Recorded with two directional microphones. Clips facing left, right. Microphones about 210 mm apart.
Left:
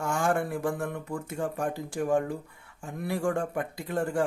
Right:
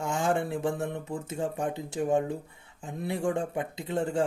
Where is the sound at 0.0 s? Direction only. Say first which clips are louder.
Even; 20° right (ahead or behind).